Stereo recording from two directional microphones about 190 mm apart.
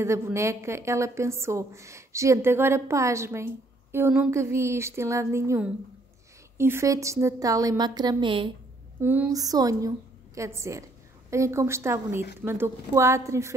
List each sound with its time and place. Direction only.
0.0 s a woman's voice: 15° right (ahead or behind)
9.0 s a woman's voice: 10° right (ahead or behind)